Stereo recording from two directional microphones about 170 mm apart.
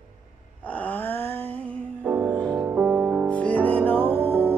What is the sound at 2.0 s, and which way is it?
Music, 10° right (ahead or behind).